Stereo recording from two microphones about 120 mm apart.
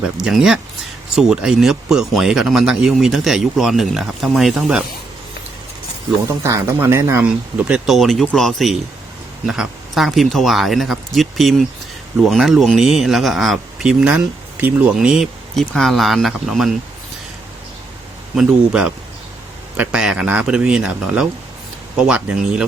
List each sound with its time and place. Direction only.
0.0 s speech: 5° right (ahead or behind)
6.4 s speech: 20° right (ahead or behind)
7.2 s speech: 10° right (ahead or behind)
7.9 s speech: centre (ahead or behind)
18.3 s speech: 5° right (ahead or behind)